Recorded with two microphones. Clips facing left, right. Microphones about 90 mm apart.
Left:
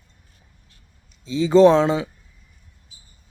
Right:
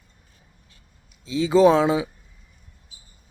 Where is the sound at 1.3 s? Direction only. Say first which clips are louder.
Left 3 dB; centre (ahead or behind).